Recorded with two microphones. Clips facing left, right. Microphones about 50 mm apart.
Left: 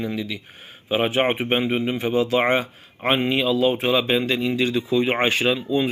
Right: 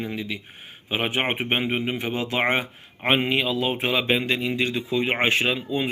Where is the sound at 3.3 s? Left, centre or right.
Right.